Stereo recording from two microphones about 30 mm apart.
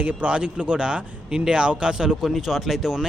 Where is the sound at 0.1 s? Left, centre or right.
Right.